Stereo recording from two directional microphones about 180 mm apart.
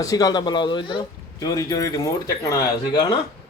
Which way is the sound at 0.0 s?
20° left (ahead or behind).